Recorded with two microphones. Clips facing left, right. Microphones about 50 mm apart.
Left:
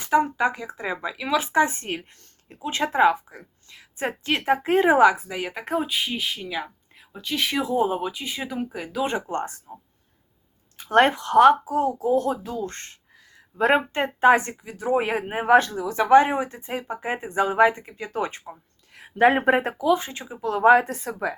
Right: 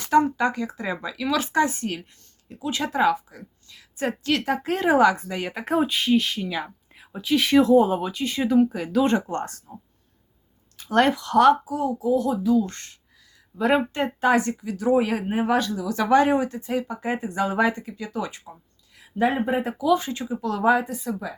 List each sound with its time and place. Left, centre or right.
0.0 s a sound: centre
0.3 s speech: centre
5.1 s speech: centre
9.3 s speech: centre
10.8 s a sound: left
11.6 s a sound: left
13.6 s speech: left
18.9 s speech: left
19.8 s speech: left
20.8 s speech: left